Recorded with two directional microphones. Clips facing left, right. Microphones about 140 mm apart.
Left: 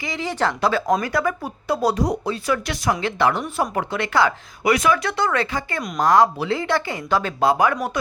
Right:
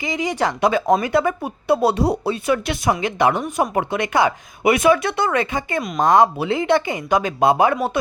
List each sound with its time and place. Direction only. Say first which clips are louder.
0.0 s speech: right 2 dB; 15° right (ahead or behind)
7.6 s speech: right 3 dB; 25° right (ahead or behind)